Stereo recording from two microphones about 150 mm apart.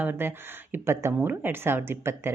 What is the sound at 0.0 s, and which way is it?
Speech, 15° right (ahead or behind).